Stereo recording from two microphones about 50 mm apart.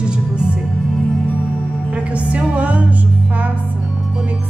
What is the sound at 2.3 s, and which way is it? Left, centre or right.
Music, right.